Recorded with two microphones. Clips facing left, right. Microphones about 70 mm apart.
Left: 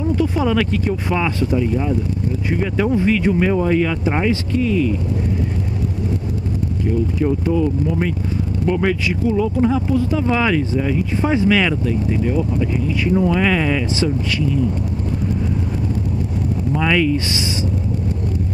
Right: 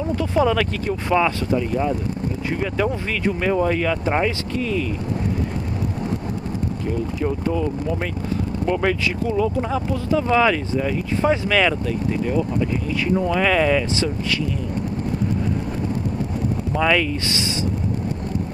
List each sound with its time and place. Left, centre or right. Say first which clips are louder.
0.1 s speech: even; centre
1.6 s speech: left 2 dB; centre
8.6 s speech: left 2 dB; centre
11.1 s speech: even; centre
11.4 s speech: left 2 dB; centre
13.1 s speech: left 2 dB; centre
16.7 s speech: left 2 dB; centre